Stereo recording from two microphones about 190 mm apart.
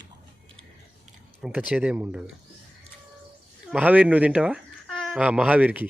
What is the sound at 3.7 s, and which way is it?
Speech, 10° right (ahead or behind).